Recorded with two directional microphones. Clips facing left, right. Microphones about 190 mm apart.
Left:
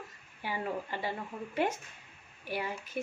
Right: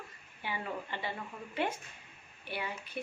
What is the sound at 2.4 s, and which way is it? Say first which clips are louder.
Speech: left 3 dB; 40° left (ahead or behind).